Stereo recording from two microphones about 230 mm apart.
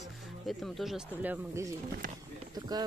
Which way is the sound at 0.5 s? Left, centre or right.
Centre.